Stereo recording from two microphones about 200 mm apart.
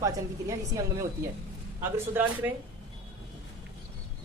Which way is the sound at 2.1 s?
10° right (ahead or behind).